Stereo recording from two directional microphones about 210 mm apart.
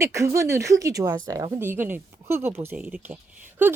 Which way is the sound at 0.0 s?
15° right (ahead or behind).